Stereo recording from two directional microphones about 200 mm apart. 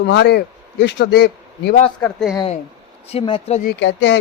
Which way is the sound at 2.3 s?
25° left (ahead or behind).